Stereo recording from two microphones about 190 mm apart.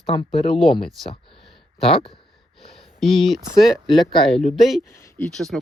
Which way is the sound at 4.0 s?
25° left (ahead or behind).